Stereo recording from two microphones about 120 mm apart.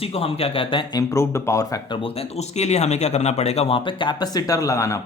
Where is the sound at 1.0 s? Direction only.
25° left (ahead or behind).